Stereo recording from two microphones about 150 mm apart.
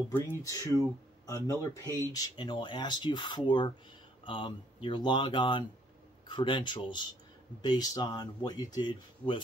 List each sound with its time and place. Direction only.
0.1 s speech: 20° left (ahead or behind)